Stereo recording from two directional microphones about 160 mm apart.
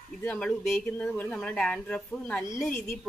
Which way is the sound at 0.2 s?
5° left (ahead or behind).